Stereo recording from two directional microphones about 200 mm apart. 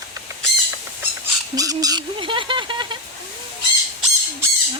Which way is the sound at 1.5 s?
20° right (ahead or behind).